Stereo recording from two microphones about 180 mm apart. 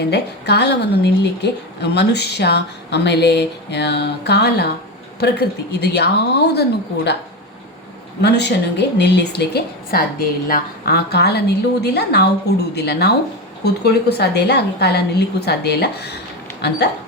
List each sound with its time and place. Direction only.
0.1 s a woman's voice: 70° left (ahead or behind)
8.2 s a woman's voice: 70° left (ahead or behind)